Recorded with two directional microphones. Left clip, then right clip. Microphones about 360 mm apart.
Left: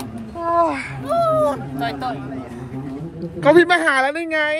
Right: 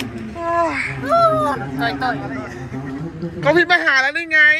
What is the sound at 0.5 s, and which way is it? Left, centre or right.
Speech, centre.